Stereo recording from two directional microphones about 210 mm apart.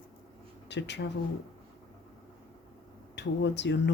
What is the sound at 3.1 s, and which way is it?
Speech, 55° left (ahead or behind).